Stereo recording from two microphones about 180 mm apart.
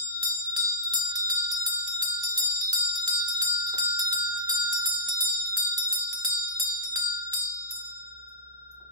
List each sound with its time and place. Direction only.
0.2 s bell: 25° right (ahead or behind)